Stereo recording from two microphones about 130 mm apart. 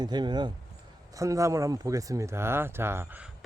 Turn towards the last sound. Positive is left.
turn(degrees=-20)  # may be behind; listen again after turning